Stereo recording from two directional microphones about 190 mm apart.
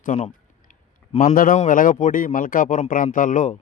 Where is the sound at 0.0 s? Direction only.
40° left (ahead or behind).